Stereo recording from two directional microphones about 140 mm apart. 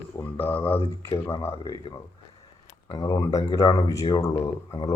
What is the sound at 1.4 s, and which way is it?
Speech, 25° left (ahead or behind).